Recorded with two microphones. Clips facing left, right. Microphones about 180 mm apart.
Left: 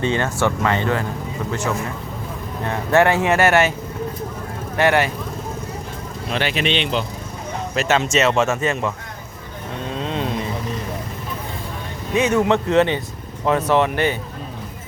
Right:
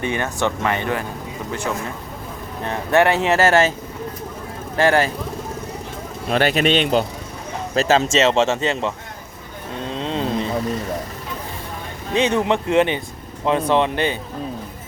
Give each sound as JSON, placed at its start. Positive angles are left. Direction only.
{"t": 0.0, "sound": "speech", "side_deg": -15}
{"t": 2.6, "sound": "speech", "side_deg": -20}
{"t": 4.8, "sound": "speech", "side_deg": -30}
{"t": 6.3, "sound": "speech", "side_deg": -45}
{"t": 7.8, "sound": "speech", "side_deg": -35}
{"t": 9.9, "sound": "vehicle", "side_deg": -30}
{"t": 12.1, "sound": "speech", "side_deg": -30}
{"t": 12.5, "sound": "speech", "side_deg": -15}